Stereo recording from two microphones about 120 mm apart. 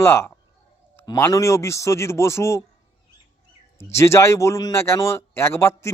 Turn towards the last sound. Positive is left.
turn(degrees=20)  # may be behind; listen again after turning